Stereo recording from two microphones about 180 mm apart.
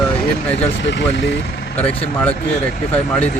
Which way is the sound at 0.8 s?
85° left.